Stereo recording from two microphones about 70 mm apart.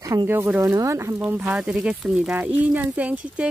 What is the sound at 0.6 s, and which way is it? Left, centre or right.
Speech, right.